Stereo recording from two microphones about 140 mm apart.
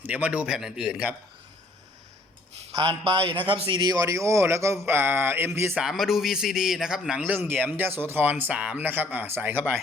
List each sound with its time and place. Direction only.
0.0 s a man's voice: 10° right (ahead or behind)
2.7 s a man's voice: 30° right (ahead or behind)
5.7 s a man's voice: centre (ahead or behind)